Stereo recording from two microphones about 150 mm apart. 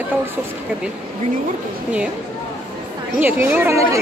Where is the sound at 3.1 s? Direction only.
15° right (ahead or behind).